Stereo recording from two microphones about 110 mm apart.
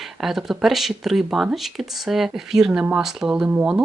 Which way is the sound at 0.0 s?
Centre (ahead or behind).